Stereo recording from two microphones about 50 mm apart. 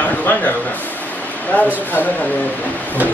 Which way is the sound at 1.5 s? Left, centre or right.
Left.